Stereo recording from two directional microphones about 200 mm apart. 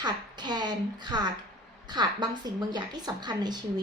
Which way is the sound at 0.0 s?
20° right (ahead or behind).